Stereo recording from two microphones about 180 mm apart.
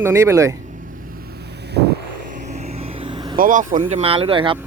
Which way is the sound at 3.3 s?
50° right (ahead or behind).